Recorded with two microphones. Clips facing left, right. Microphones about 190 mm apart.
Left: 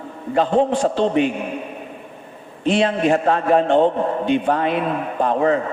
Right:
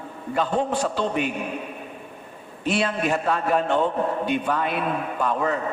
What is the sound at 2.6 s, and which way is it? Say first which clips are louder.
A man's voice: left 6 dB; 30° left (ahead or behind).